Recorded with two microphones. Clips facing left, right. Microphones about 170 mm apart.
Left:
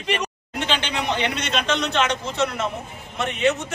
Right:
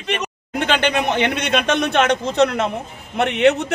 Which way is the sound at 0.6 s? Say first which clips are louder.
Right 7 dB; 55° right (ahead or behind).